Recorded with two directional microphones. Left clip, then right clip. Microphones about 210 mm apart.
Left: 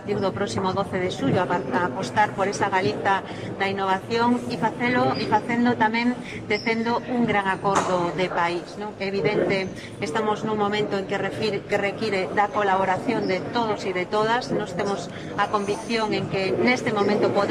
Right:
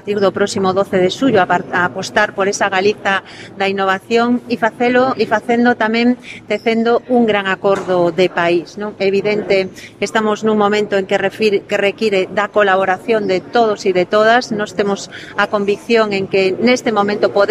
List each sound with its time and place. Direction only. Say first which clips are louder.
0.1 s speech: right 10 dB; 50° right (ahead or behind)